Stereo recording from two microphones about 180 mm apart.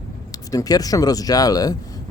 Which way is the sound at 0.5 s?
20° left (ahead or behind).